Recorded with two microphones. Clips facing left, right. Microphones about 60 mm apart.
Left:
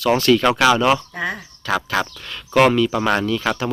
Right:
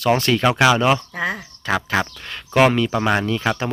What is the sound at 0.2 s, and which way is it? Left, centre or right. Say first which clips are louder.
Speech: left 4 dB; right.